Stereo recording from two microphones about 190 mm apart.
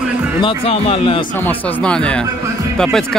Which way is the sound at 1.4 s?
5° left (ahead or behind).